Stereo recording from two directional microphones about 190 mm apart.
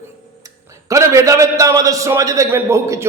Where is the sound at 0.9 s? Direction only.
15° right (ahead or behind).